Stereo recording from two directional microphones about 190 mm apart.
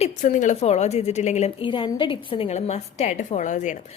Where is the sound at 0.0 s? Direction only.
40° left (ahead or behind).